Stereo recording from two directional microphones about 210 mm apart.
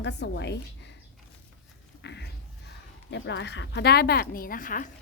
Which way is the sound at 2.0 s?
55° left (ahead or behind).